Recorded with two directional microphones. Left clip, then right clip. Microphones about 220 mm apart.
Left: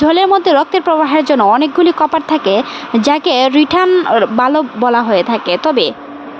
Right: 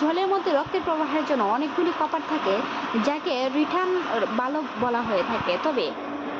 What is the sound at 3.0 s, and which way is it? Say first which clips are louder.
A woman's voice: left 16 dB; 50° left (ahead or behind).